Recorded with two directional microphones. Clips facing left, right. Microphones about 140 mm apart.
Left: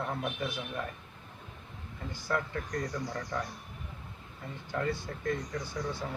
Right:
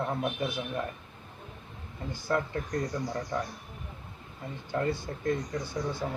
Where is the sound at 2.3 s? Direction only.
30° right (ahead or behind).